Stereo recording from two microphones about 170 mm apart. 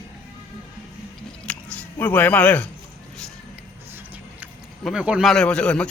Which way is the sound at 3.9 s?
10° right (ahead or behind).